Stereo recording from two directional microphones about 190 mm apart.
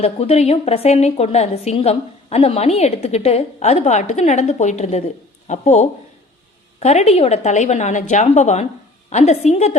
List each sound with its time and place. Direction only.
0.0 s a woman's voice: 35° left (ahead or behind)